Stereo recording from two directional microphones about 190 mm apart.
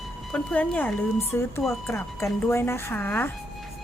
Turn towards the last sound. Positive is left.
turn(degrees=10)  # may be behind; listen again after turning